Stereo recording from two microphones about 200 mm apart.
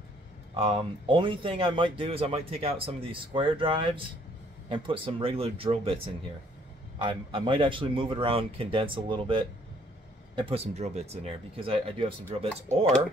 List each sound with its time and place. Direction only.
0.6 s speech: 25° right (ahead or behind)
7.0 s speech: 25° right (ahead or behind)